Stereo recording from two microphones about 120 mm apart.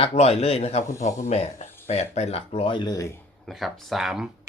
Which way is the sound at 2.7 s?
40° left (ahead or behind).